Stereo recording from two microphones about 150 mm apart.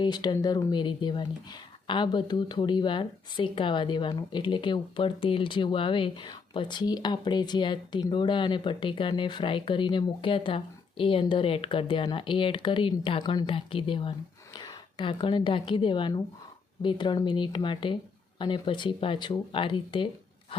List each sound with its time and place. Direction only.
0.0 s speech: 30° left (ahead or behind)